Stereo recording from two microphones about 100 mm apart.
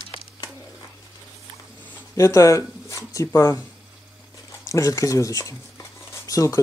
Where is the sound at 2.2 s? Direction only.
30° left (ahead or behind).